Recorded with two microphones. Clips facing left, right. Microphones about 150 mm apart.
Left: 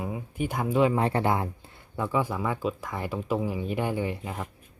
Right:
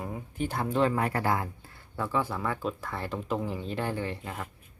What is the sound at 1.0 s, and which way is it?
Speech, 25° left (ahead or behind).